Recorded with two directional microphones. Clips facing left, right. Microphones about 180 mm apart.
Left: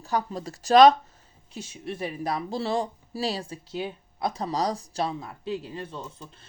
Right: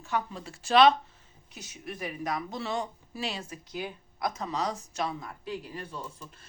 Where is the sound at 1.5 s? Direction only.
25° left (ahead or behind).